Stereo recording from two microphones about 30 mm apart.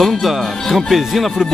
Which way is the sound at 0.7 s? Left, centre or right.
Centre.